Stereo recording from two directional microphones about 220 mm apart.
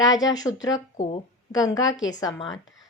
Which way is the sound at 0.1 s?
15° left (ahead or behind).